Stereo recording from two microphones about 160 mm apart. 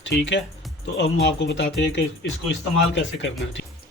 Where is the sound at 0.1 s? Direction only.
90° left.